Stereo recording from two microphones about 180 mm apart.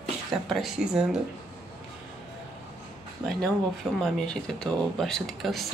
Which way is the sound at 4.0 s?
5° left (ahead or behind).